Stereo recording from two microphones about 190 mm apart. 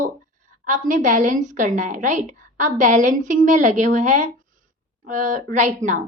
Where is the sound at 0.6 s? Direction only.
40° right (ahead or behind).